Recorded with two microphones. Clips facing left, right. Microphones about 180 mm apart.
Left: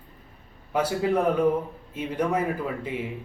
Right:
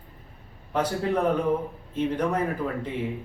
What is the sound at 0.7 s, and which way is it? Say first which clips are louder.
A man's voice: left 2 dB; 10° left (ahead or behind).